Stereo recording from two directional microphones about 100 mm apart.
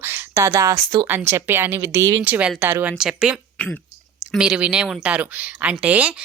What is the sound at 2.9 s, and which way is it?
A woman's voice, 5° right (ahead or behind).